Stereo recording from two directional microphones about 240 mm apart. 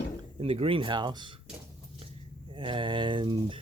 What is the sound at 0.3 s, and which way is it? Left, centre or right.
Speech, right.